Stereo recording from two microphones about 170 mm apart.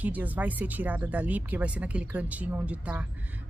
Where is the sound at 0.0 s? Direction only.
10° right (ahead or behind).